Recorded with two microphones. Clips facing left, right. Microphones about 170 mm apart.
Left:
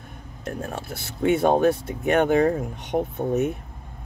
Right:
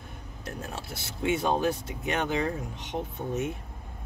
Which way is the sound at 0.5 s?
55° left (ahead or behind).